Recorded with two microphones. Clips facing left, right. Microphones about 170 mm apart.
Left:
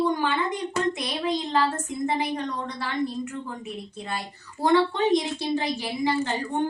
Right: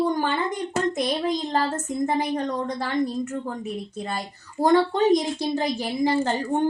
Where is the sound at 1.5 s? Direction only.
45° right (ahead or behind).